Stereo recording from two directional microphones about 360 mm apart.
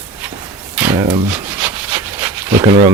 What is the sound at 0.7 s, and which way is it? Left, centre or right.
Rub, centre.